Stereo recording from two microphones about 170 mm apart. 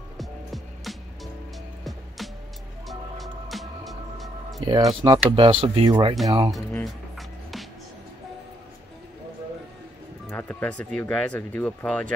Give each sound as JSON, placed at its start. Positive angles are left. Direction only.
{"t": 0.2, "sound": "music", "side_deg": 0}
{"t": 4.6, "sound": "speech", "side_deg": -20}
{"t": 6.5, "sound": "music", "side_deg": 0}
{"t": 10.3, "sound": "speech", "side_deg": 10}